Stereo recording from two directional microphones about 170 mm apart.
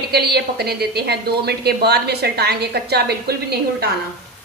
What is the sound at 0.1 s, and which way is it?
A woman's voice, 70° right (ahead or behind).